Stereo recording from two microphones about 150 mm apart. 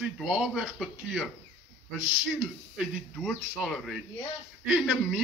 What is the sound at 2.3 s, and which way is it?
A man's voice, 5° right (ahead or behind).